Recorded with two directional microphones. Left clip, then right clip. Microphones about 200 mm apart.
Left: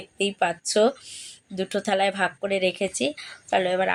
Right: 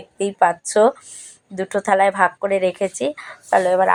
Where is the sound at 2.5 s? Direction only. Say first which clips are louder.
Right 5 dB; 30° right (ahead or behind).